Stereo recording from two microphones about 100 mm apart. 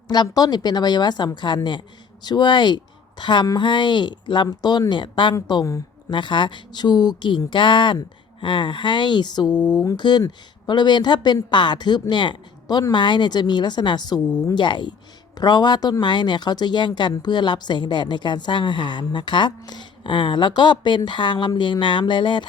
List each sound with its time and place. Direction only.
0.1 s speech: 40° left (ahead or behind)
9.7 s speech: 35° left (ahead or behind)
10.0 s speech: 45° left (ahead or behind)